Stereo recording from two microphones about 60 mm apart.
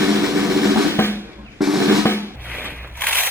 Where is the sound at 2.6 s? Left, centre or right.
Right.